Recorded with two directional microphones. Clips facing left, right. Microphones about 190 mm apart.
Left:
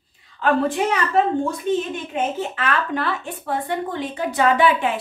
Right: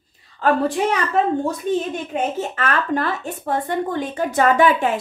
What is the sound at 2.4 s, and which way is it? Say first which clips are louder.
A woman's voice: right 1 dB; 45° right (ahead or behind).